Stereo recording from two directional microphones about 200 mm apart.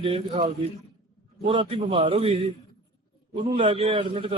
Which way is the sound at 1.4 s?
25° right (ahead or behind).